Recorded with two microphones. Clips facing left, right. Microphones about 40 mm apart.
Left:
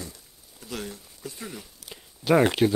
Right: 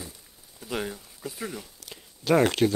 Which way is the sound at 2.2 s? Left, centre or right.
Centre.